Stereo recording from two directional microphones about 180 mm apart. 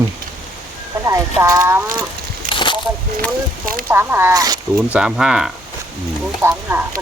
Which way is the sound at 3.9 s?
10° right (ahead or behind).